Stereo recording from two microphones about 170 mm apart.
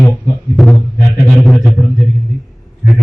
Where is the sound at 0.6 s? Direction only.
Centre (ahead or behind).